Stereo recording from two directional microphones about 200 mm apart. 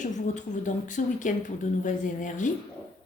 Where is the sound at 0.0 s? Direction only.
40° left (ahead or behind).